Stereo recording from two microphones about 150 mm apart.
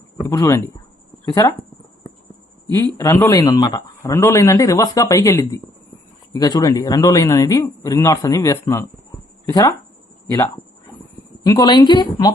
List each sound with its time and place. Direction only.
0.3 s speech: 20° left (ahead or behind)
3.0 s a man's voice: 15° left (ahead or behind)